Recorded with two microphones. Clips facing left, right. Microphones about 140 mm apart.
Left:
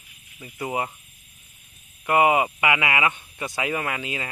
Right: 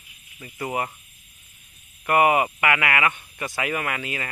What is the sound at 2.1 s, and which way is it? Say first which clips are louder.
Speech: even; 15° left (ahead or behind).